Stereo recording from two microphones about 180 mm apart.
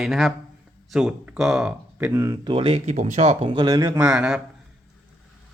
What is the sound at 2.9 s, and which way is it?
Speech, 40° right (ahead or behind).